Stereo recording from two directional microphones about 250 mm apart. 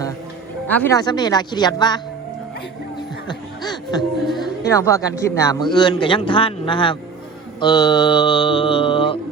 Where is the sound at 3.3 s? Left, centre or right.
Centre.